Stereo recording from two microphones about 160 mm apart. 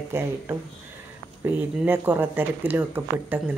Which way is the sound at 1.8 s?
10° right (ahead or behind).